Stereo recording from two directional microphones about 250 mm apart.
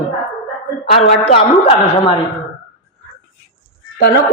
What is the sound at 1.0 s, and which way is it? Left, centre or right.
A woman's voice, left.